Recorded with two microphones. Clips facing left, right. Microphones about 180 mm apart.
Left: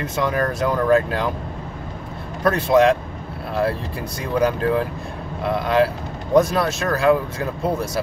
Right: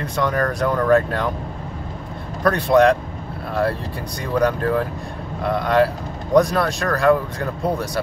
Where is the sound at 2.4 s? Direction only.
Centre (ahead or behind).